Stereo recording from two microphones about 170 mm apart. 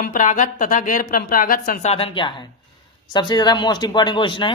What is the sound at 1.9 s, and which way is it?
Speech, 35° left (ahead or behind).